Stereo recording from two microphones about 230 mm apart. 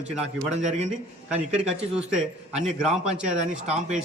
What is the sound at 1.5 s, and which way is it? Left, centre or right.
Speech, centre.